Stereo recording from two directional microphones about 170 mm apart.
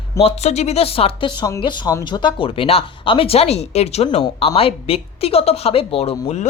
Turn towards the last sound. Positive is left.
turn(degrees=40)  # may be behind; listen again after turning